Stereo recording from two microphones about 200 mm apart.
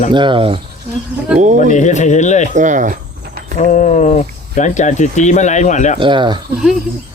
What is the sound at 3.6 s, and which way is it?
Speech, 40° left (ahead or behind).